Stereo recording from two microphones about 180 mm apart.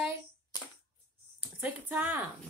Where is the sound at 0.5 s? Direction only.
20° left (ahead or behind).